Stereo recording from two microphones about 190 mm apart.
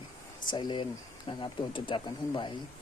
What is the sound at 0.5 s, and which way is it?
Speech, 25° left (ahead or behind).